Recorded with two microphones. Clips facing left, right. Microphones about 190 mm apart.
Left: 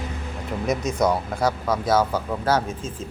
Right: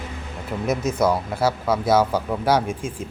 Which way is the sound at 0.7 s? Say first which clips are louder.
Right 1 dB; 5° right (ahead or behind).